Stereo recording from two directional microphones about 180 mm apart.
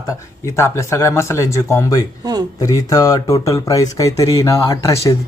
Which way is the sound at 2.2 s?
20° right (ahead or behind).